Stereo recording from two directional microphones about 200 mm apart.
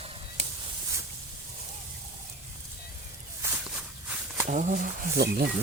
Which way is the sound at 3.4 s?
10° right (ahead or behind).